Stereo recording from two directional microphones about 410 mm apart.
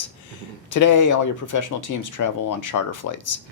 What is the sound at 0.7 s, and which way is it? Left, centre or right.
Speech, left.